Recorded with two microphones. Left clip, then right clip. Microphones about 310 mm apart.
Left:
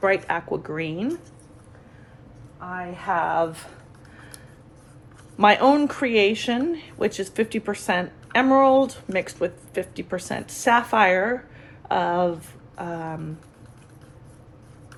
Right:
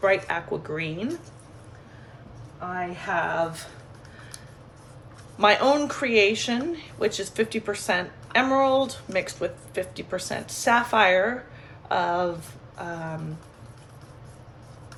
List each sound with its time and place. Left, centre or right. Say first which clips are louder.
0.0 s speech: left 1 dB; left
3.1 s speech: left 4 dB; centre
5.4 s speech: left 3 dB; left